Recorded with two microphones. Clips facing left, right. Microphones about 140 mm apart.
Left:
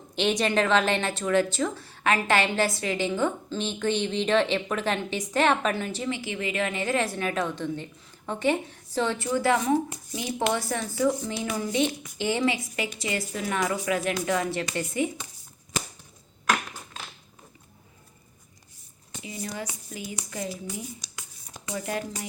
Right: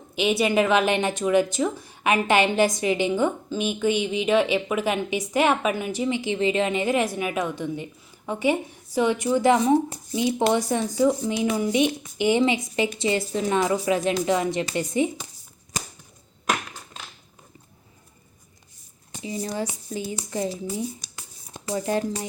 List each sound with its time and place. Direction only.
0.2 s speech: 10° right (ahead or behind)
19.1 s speech: 30° right (ahead or behind)
21.0 s a sound: 50° right (ahead or behind)
21.7 s speech: 30° right (ahead or behind)